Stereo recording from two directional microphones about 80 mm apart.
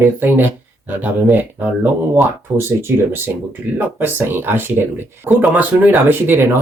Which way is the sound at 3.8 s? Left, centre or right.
Right.